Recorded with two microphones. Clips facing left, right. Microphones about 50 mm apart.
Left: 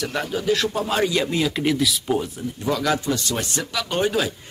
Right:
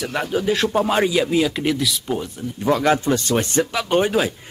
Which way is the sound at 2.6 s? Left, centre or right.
Right.